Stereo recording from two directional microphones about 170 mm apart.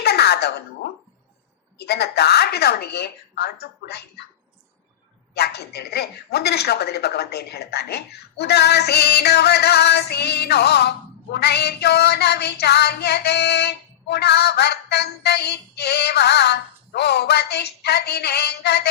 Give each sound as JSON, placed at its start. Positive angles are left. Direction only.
{"t": 0.0, "sound": "a sound", "side_deg": 70}
{"t": 1.8, "sound": "speech", "side_deg": 70}
{"t": 5.3, "sound": "speech", "side_deg": 75}